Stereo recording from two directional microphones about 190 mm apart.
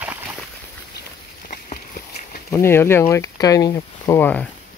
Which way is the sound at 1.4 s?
50° left (ahead or behind).